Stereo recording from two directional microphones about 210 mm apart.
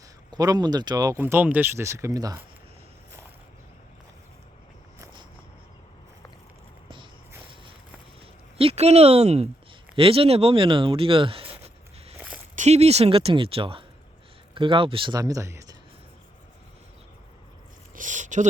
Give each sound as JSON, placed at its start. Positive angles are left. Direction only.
{"t": 0.3, "sound": "speech", "side_deg": -20}
{"t": 8.5, "sound": "speech", "side_deg": -30}
{"t": 17.9, "sound": "a sound", "side_deg": -35}